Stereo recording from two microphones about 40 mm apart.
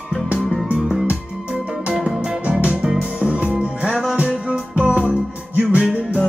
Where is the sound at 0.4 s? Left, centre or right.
Centre.